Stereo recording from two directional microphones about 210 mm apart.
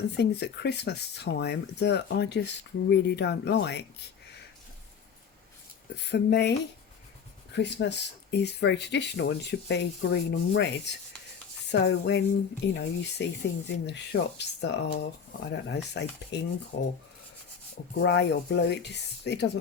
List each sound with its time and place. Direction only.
0.2 s speech: 50° left (ahead or behind)
6.0 s speech: 55° left (ahead or behind)
7.5 s speech: 55° left (ahead or behind)
17.9 s speech: 55° left (ahead or behind)